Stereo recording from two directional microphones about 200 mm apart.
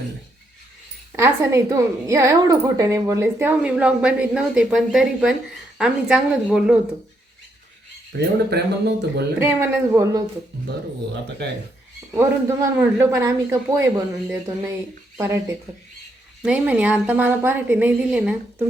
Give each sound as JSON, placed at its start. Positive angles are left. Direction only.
{"t": 1.1, "sound": "a woman's voice", "side_deg": -15}
{"t": 8.1, "sound": "speech", "side_deg": -60}
{"t": 9.4, "sound": "a woman's voice", "side_deg": -15}
{"t": 12.1, "sound": "a woman's voice", "side_deg": -10}